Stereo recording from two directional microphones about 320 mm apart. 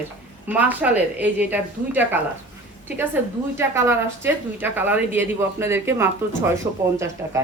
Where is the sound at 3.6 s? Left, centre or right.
Centre.